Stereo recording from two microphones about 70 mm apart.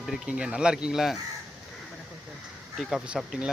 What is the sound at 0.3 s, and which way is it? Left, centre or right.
Speech, centre.